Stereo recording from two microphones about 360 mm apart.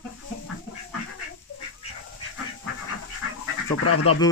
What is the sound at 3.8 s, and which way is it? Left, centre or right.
Speech, left.